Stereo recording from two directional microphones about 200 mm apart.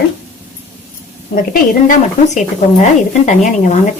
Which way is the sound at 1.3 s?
45° left (ahead or behind).